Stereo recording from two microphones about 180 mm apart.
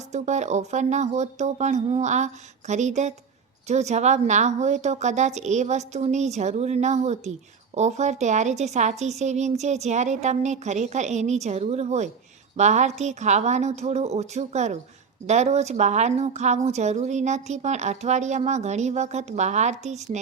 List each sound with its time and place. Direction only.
0.1 s speech: 40° right (ahead or behind)